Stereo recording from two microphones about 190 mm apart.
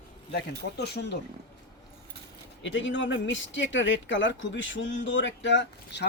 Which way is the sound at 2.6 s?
75° left (ahead or behind).